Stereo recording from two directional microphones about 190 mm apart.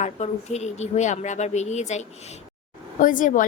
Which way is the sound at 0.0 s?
35° left (ahead or behind).